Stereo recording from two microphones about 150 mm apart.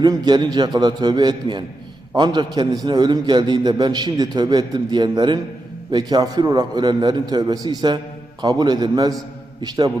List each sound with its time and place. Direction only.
0.0 s a man's voice: 30° right (ahead or behind)